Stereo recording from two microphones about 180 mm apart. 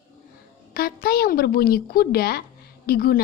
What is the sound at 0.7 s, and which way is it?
A woman's voice, 55° left (ahead or behind).